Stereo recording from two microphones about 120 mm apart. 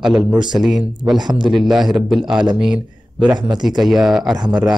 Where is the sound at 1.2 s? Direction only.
35° right (ahead or behind).